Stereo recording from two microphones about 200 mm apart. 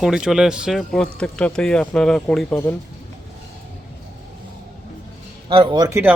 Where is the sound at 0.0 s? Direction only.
5° right (ahead or behind).